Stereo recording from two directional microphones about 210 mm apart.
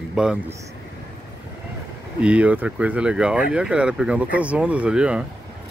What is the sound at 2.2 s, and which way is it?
Speech, 5° right (ahead or behind).